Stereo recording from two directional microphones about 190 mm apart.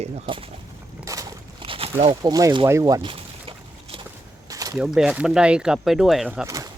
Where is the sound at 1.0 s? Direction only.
20° right (ahead or behind).